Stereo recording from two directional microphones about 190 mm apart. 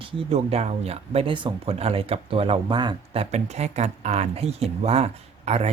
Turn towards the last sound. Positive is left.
turn(degrees=-35)  # may be behind; listen again after turning